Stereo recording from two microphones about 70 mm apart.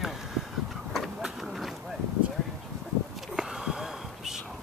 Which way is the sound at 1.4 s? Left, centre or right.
Centre.